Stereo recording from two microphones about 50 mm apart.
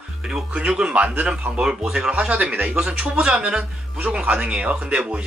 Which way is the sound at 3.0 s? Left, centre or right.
Centre.